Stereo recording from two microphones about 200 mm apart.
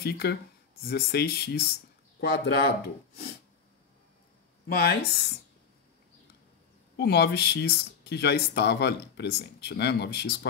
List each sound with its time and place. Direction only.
0.0 s speech: 50° left (ahead or behind)
4.6 s speech: 50° left (ahead or behind)
7.0 s speech: 55° left (ahead or behind)